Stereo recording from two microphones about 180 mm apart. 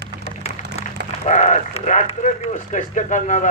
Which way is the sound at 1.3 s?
45° left (ahead or behind).